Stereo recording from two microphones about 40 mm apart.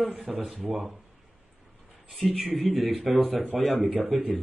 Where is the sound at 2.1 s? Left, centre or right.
Centre.